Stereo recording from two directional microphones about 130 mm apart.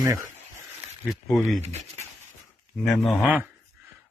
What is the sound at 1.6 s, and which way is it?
Speech, 55° right (ahead or behind).